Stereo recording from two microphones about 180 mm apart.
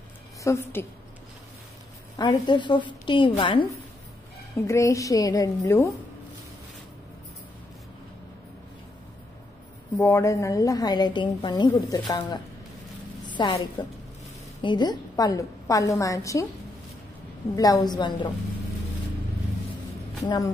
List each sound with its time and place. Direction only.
0.4 s a woman's voice: 15° left (ahead or behind)
2.1 s a woman's voice: 25° left (ahead or behind)
4.6 s a woman's voice: 15° left (ahead or behind)
9.9 s a woman's voice: 15° left (ahead or behind)
17.6 s a woman's voice: 20° left (ahead or behind)
20.2 s a woman's voice: 20° left (ahead or behind)